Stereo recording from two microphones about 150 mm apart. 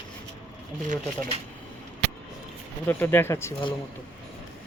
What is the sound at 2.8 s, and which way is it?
Speech, 15° left (ahead or behind).